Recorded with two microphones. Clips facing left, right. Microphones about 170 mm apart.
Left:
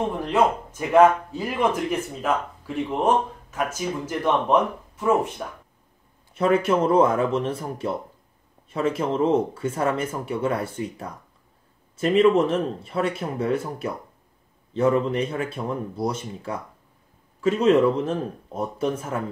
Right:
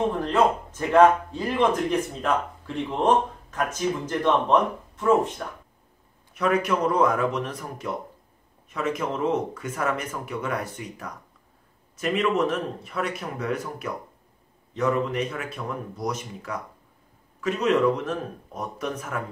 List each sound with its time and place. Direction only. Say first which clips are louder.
0.2 s speech: left 1 dB; 10° left (ahead or behind)
6.3 s speech: left 3 dB; 30° left (ahead or behind)